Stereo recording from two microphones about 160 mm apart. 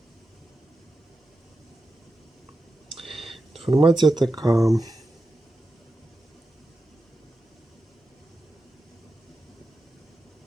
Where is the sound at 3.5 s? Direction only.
35° right (ahead or behind).